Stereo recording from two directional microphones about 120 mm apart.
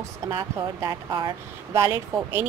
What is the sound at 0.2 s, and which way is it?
Speech, 20° right (ahead or behind).